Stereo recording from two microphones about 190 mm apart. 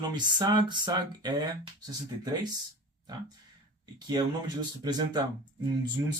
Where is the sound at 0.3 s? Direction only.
25° right (ahead or behind).